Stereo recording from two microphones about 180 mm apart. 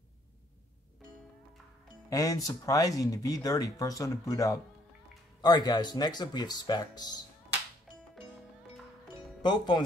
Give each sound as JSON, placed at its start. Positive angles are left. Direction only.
{"t": 2.0, "sound": "speech", "side_deg": 20}
{"t": 9.4, "sound": "speech", "side_deg": 25}